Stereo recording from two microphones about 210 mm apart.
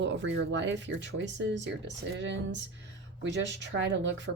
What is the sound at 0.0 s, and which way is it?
Speech, 60° right (ahead or behind).